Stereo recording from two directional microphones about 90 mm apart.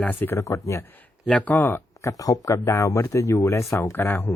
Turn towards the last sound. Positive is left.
turn(degrees=30)  # may be behind; listen again after turning